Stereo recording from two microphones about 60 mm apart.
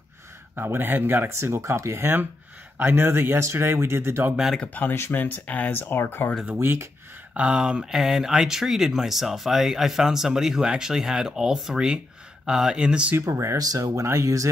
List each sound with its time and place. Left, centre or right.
0.6 s speech: right
1.5 s speech: right
2.8 s speech: right
4.6 s speech: left
6.6 s speech: right
7.3 s speech: centre
13.3 s speech: right
13.6 s speech: right
14.0 s speech: right